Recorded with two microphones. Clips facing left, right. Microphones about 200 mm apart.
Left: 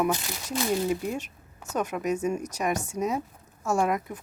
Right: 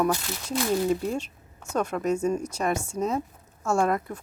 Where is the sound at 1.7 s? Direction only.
15° left (ahead or behind).